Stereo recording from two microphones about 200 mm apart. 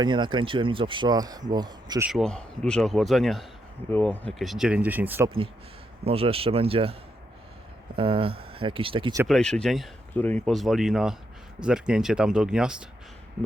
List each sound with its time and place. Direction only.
0.0 s speech: 25° right (ahead or behind)
2.0 s speech: centre (ahead or behind)
6.1 s speech: 30° right (ahead or behind)
7.9 s speech: 25° right (ahead or behind)
9.2 s speech: centre (ahead or behind)